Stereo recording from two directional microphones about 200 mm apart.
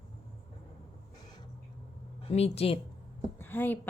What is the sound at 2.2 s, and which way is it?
Speech, 30° left (ahead or behind).